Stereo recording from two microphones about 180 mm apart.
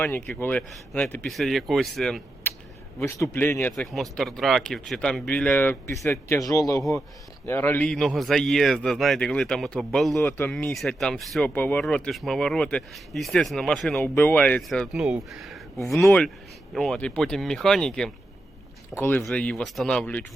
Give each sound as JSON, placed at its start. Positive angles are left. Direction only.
{"t": 0.0, "sound": "speech", "side_deg": 10}
{"t": 3.0, "sound": "a man's voice", "side_deg": 15}